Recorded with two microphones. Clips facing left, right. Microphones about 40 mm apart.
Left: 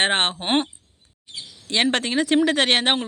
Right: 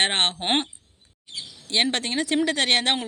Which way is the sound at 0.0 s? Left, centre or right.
Left.